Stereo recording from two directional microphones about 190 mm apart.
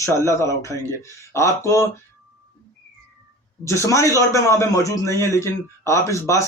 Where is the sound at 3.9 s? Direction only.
15° left (ahead or behind).